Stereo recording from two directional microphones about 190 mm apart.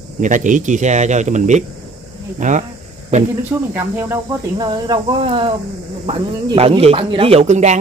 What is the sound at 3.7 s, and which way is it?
Cricket, 10° right (ahead or behind).